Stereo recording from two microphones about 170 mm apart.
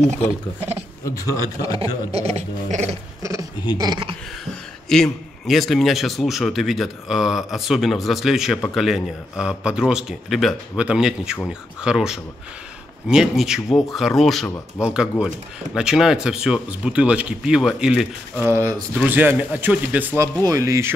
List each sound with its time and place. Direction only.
1.0 s a man's voice: 20° left (ahead or behind)
1.8 s speech: 40° right (ahead or behind)
3.2 s a sound: 20° right (ahead or behind)
3.7 s speech: 25° right (ahead or behind)
4.8 s speech: centre (ahead or behind); by 20.9 s 20° right (ahead or behind)